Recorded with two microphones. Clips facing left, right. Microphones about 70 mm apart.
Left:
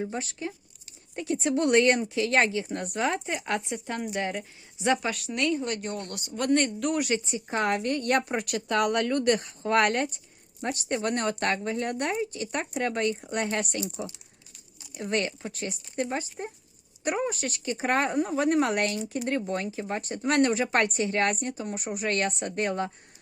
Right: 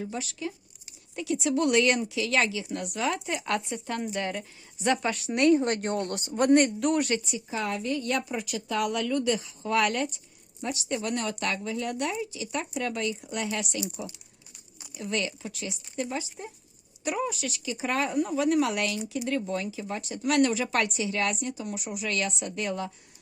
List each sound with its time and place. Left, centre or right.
0.0 s speech: left
3.3 s speech: centre
5.0 s speech: centre
5.3 s speech: right
6.5 s speech: centre
7.5 s a woman's voice: left
14.9 s speech: left